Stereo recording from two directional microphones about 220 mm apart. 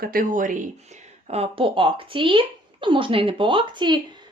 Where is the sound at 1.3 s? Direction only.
25° right (ahead or behind).